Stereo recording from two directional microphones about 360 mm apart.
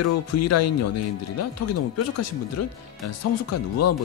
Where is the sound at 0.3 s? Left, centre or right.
Left.